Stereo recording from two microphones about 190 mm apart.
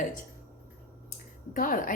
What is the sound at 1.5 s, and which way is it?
Speech, 45° left (ahead or behind).